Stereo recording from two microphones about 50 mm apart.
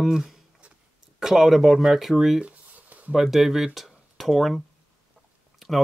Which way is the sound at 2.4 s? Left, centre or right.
Right.